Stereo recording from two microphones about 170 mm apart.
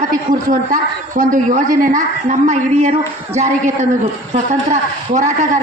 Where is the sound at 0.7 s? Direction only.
50° right (ahead or behind).